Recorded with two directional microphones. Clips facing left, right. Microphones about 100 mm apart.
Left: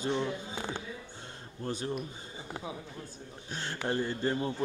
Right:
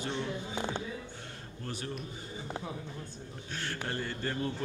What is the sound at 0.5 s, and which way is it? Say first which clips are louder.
Speech: right 2 dB; 20° right (ahead or behind).